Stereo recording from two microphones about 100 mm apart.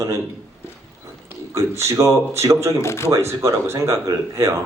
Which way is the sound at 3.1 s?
25° right (ahead or behind).